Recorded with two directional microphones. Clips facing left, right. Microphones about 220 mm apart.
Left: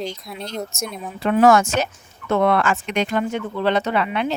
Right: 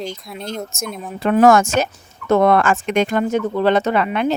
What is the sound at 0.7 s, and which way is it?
Speech, 50° right (ahead or behind).